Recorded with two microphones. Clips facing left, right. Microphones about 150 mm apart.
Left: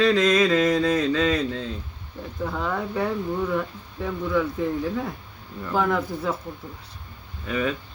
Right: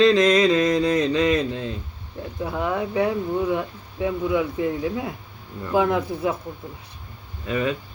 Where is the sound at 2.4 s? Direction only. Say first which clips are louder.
Right 3 dB; 15° right (ahead or behind).